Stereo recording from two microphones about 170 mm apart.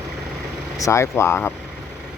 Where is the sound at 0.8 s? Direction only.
15° left (ahead or behind).